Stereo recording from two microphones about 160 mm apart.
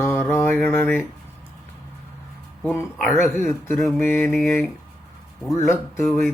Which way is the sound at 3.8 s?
Centre (ahead or behind).